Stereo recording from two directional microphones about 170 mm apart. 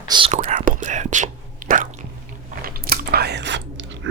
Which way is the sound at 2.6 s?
65° right (ahead or behind).